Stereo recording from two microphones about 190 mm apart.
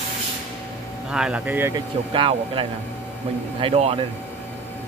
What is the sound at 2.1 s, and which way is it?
Speech, 30° right (ahead or behind).